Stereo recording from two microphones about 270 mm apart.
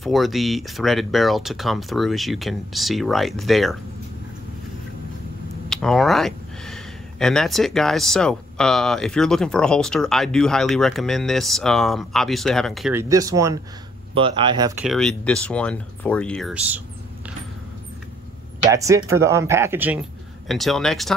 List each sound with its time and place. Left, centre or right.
0.0 s speech: centre
5.7 s speech: centre
13.1 s speech: centre
14.8 s speech: centre
18.7 s speech: centre